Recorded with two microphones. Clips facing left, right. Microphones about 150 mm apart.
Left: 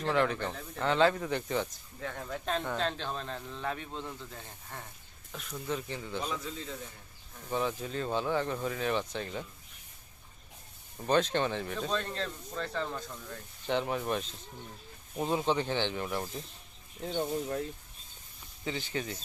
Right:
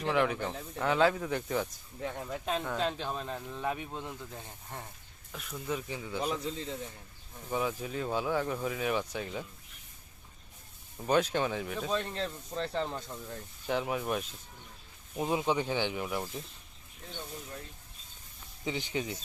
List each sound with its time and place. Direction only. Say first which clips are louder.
0.0 s speech: even; 10° right (ahead or behind)
2.0 s speech: right 1 dB; 15° right (ahead or behind)
5.3 s speech: even; centre (ahead or behind)
6.3 s a man's voice: right 3 dB; 25° right (ahead or behind)
7.5 s speech: even; 10° right (ahead or behind)
10.9 s speech: even; 5° right (ahead or behind)
13.7 s speech: left 1 dB; 5° right (ahead or behind)
17.1 s speech: left 11 dB; 50° left (ahead or behind)
18.6 s speech: right 1 dB; 15° right (ahead or behind)